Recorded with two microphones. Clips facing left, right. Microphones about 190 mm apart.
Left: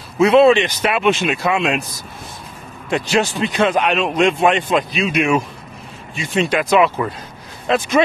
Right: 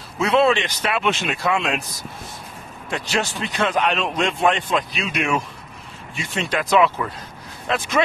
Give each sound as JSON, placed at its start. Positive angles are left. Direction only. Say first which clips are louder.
{"t": 0.2, "sound": "a man's voice", "louder": "left 7 dB", "side_deg": 20}
{"t": 2.9, "sound": "a man's voice", "louder": "left 7 dB", "side_deg": 15}